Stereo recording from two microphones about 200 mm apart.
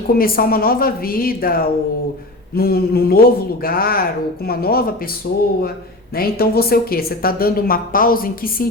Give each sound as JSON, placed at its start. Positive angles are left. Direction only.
{"t": 0.1, "sound": "a woman's voice", "side_deg": 45}
{"t": 6.1, "sound": "a woman's voice", "side_deg": 50}